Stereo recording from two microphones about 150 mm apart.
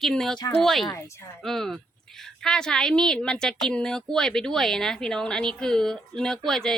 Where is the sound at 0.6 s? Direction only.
Centre (ahead or behind).